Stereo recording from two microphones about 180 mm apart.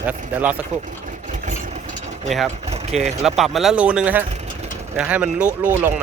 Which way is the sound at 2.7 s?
35° right (ahead or behind).